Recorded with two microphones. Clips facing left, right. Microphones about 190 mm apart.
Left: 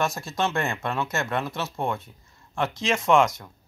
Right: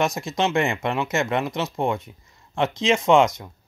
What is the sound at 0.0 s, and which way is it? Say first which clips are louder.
Speech: right 3 dB; 20° right (ahead or behind).